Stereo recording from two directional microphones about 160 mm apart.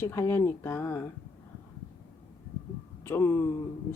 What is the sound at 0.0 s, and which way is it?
Speech, 15° left (ahead or behind).